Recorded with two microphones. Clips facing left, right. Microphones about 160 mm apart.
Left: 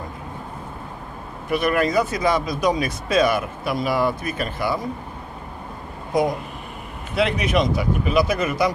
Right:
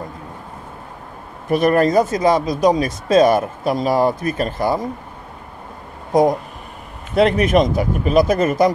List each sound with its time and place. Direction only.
1.5 s speech: 40° right (ahead or behind)
6.1 s speech: 45° right (ahead or behind)